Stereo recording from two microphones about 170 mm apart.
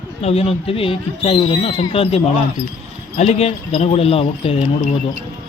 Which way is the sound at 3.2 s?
40° left (ahead or behind).